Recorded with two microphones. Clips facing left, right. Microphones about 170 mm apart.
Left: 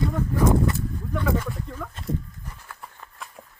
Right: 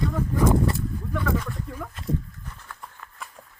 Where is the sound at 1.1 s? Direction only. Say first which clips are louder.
Left 2 dB; 5° right (ahead or behind).